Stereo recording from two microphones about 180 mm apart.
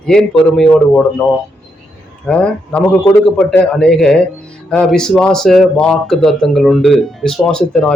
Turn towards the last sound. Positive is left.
turn(degrees=5)  # may be behind; listen again after turning